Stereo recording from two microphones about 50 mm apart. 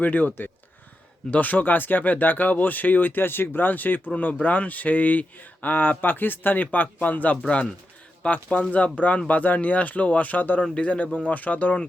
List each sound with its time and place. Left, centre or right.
0.0 s speech: left
7.4 s speech: left
10.6 s speech: left